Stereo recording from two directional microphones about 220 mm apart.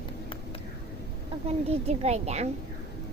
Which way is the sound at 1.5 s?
30° right (ahead or behind).